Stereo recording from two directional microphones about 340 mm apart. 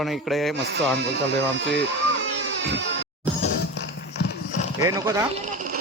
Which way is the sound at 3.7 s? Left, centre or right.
Left.